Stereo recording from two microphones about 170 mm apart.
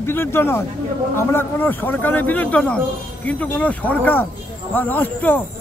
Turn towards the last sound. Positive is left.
turn(degrees=10)  # may be behind; listen again after turning